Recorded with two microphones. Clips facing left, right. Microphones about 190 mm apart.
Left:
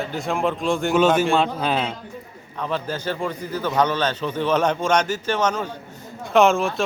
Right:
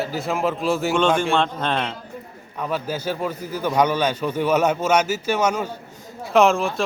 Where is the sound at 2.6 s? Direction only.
10° right (ahead or behind).